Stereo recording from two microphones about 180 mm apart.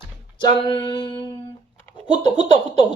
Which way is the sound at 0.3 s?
25° left (ahead or behind).